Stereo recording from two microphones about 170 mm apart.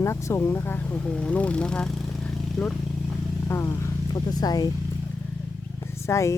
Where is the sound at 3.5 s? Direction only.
15° left (ahead or behind).